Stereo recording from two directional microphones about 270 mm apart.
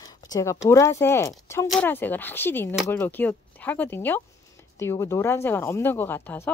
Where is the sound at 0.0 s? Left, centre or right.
Centre.